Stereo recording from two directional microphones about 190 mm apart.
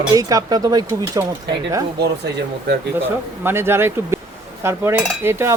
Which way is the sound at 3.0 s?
10° right (ahead or behind).